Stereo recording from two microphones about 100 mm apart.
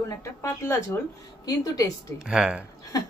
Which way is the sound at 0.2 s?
25° left (ahead or behind).